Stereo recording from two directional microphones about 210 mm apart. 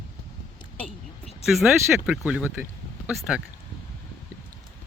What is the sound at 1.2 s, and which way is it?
Speech, centre (ahead or behind).